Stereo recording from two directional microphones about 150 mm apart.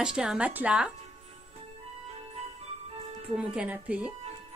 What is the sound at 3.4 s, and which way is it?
Speech, 10° right (ahead or behind).